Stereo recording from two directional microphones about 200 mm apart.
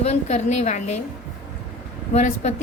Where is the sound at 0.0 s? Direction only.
35° left (ahead or behind).